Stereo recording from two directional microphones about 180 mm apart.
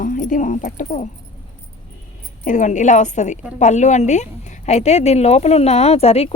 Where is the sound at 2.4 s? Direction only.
45° left (ahead or behind).